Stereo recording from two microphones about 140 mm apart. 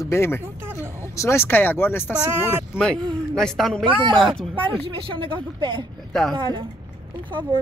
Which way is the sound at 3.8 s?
35° right (ahead or behind).